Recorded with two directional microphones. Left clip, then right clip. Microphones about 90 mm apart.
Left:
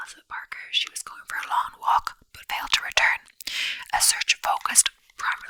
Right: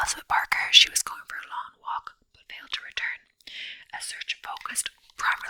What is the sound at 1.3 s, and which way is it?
Whispering, 35° left (ahead or behind).